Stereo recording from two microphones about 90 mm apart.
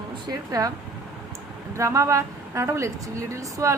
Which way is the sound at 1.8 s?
35° right (ahead or behind).